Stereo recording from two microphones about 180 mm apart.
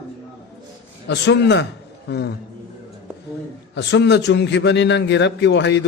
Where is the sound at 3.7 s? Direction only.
75° left (ahead or behind).